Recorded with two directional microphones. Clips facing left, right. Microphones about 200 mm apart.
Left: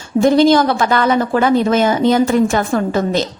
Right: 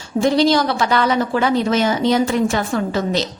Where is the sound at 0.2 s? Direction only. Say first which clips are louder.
Left 4 dB; 50° left (ahead or behind).